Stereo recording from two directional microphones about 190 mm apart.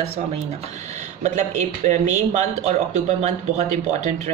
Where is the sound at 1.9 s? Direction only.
35° right (ahead or behind).